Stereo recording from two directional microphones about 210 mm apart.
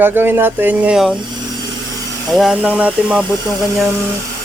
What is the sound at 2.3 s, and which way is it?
Speech, centre (ahead or behind).